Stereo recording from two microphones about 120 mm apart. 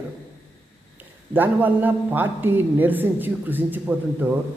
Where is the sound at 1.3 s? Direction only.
15° right (ahead or behind).